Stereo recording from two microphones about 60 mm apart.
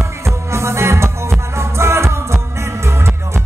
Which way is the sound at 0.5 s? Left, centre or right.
Right.